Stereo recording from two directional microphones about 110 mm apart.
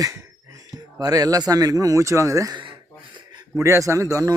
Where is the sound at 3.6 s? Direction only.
30° right (ahead or behind).